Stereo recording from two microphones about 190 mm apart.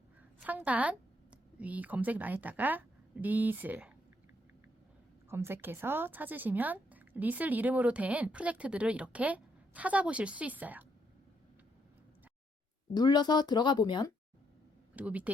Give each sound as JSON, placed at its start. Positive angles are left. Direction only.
{"t": 0.3, "sound": "a woman's voice", "side_deg": -10}
{"t": 5.3, "sound": "speech", "side_deg": -10}
{"t": 12.9, "sound": "speech", "side_deg": 20}
{"t": 14.9, "sound": "speech", "side_deg": -5}